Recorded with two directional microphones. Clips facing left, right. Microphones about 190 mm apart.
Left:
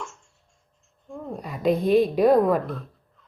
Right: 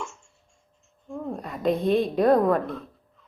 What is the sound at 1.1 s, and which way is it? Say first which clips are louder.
A woman's voice: right 2 dB; centre (ahead or behind).